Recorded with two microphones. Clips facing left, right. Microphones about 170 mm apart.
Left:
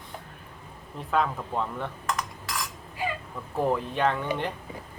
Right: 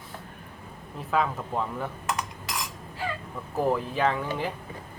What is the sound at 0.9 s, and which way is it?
A man's voice, centre (ahead or behind).